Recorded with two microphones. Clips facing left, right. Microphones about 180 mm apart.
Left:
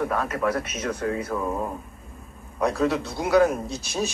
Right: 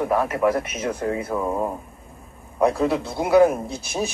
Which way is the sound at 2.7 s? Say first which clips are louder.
Right 1 dB; 15° right (ahead or behind).